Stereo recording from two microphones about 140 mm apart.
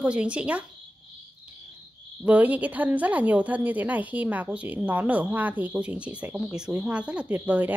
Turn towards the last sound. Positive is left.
turn(degrees=-10)  # may be behind; listen again after turning